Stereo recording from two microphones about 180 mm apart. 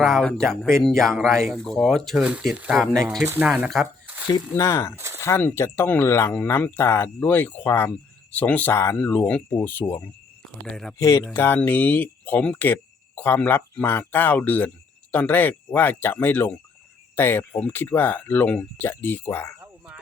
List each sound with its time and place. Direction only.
0.0 s speech: 5° left (ahead or behind)
3.2 s speech: 10° right (ahead or behind)
3.5 s speech: centre (ahead or behind)
4.5 s speech: 15° left (ahead or behind)
11.0 s speech: 20° left (ahead or behind)